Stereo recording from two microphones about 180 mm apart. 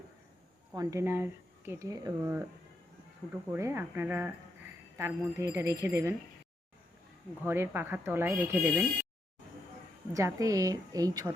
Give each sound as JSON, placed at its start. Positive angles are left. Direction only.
{"t": 0.7, "sound": "speech", "side_deg": -15}
{"t": 3.5, "sound": "speech", "side_deg": -15}
{"t": 7.4, "sound": "speech", "side_deg": -15}
{"t": 10.1, "sound": "a woman's voice", "side_deg": -20}